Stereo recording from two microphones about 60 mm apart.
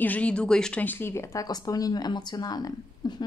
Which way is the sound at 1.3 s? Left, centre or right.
Left.